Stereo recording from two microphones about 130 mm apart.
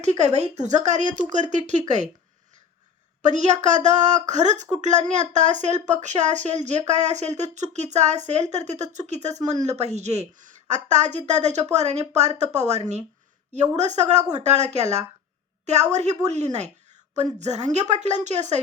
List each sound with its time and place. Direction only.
0.0 s speech: 60° right (ahead or behind)
3.2 s speech: 70° right (ahead or behind)